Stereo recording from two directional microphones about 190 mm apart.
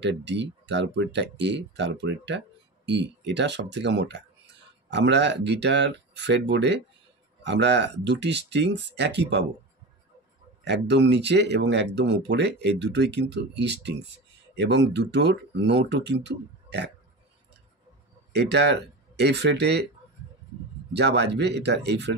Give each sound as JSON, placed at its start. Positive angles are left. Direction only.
{"t": 0.0, "sound": "speech", "side_deg": -65}
{"t": 10.6, "sound": "speech", "side_deg": -65}
{"t": 18.3, "sound": "speech", "side_deg": -65}
{"t": 20.9, "sound": "speech", "side_deg": -65}